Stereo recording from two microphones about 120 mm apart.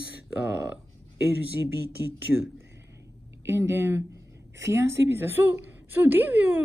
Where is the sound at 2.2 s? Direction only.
20° right (ahead or behind).